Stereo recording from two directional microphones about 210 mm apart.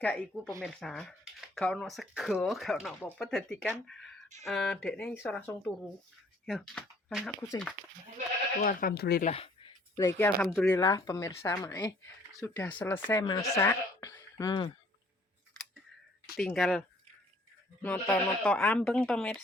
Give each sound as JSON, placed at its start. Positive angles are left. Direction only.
{"t": 0.0, "sound": "speech", "side_deg": 5}
{"t": 8.6, "sound": "speech", "side_deg": 45}
{"t": 9.2, "sound": "a sound", "side_deg": 25}
{"t": 10.1, "sound": "speech", "side_deg": 10}
{"t": 10.8, "sound": "speech", "side_deg": 20}
{"t": 16.4, "sound": "speech", "side_deg": 0}
{"t": 17.8, "sound": "speech", "side_deg": 10}